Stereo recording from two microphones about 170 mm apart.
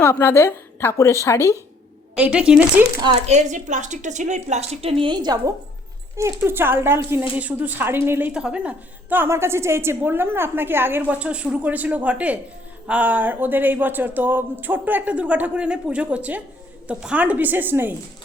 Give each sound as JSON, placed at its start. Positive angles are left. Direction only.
{"t": 0.0, "sound": "a woman's voice", "side_deg": 10}
{"t": 2.1, "sound": "speech", "side_deg": -5}
{"t": 3.0, "sound": "a woman's voice", "side_deg": -35}